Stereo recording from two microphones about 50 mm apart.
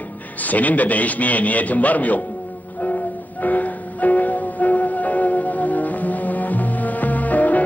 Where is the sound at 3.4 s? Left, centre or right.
Left.